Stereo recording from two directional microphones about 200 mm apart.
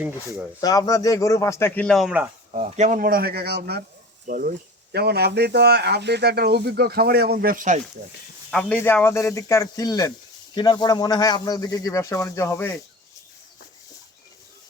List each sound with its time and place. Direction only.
0.6 s a man's voice: 20° left (ahead or behind); by 2.3 s 5° right (ahead or behind)
2.5 s speech: 35° right (ahead or behind)
8.4 s a man's voice: 5° left (ahead or behind)